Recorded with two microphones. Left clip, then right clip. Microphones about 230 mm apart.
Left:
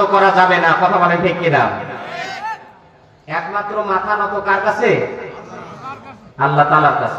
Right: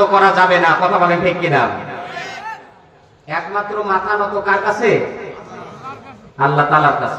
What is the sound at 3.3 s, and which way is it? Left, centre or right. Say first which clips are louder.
A man's voice: even; right.